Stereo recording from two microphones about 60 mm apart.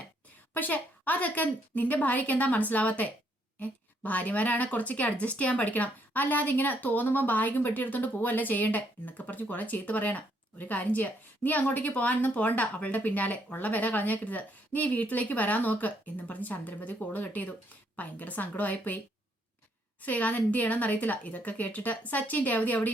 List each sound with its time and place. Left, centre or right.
0.5 s speech: left
20.0 s speech: left